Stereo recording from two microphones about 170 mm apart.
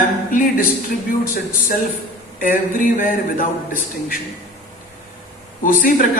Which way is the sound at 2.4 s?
50° left (ahead or behind).